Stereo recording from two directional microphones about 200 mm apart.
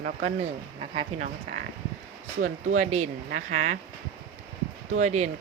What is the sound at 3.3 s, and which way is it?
Speech, 45° right (ahead or behind).